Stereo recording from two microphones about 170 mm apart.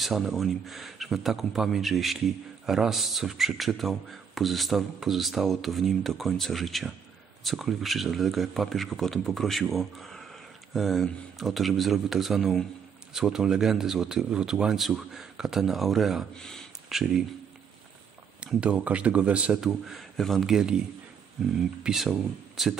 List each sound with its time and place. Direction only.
0.0 s speech: centre (ahead or behind)
18.4 s a man's voice: 5° right (ahead or behind)